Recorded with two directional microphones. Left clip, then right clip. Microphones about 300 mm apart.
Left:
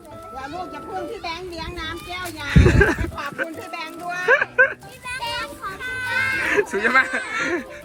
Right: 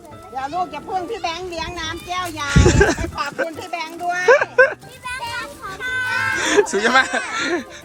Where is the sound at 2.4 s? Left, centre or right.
Centre.